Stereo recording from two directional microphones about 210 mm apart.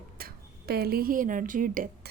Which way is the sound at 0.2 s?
45° right (ahead or behind).